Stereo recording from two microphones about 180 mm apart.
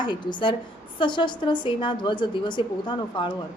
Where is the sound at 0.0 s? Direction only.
25° left (ahead or behind).